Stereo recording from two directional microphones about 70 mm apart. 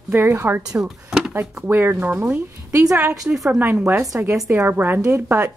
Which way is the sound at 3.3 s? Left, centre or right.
Centre.